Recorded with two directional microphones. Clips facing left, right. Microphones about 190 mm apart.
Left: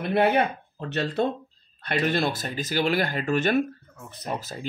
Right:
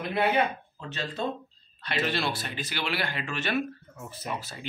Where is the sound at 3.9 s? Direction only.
5° right (ahead or behind).